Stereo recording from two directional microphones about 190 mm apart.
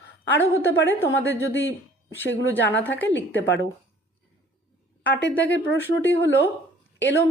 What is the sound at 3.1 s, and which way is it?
Speech, 70° left (ahead or behind).